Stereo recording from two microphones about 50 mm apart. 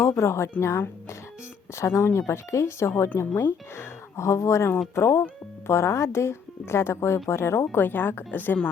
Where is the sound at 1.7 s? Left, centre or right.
Left.